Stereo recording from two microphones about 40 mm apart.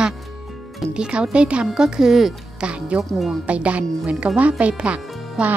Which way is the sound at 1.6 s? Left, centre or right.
Centre.